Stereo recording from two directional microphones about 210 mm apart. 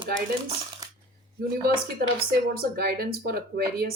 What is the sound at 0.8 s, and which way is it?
Coin, 15° right (ahead or behind).